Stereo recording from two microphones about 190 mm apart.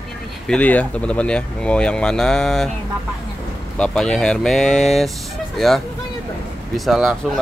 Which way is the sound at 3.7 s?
5° left (ahead or behind).